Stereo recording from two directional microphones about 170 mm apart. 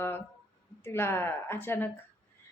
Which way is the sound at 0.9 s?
15° left (ahead or behind).